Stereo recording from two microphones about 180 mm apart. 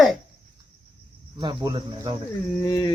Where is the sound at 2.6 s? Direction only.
20° left (ahead or behind).